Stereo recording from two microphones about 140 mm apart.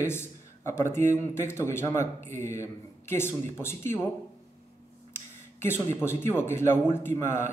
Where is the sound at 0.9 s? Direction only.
60° right (ahead or behind).